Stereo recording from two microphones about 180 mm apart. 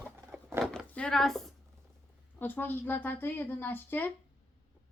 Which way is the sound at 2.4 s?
10° left (ahead or behind).